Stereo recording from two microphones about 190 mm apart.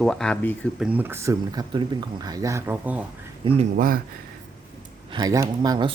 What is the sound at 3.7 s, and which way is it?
Speech, 45° right (ahead or behind).